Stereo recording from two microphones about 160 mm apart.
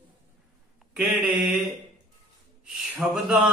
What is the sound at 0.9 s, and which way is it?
Speech, 10° right (ahead or behind).